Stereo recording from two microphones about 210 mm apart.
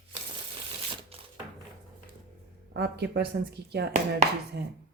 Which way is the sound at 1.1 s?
25° right (ahead or behind).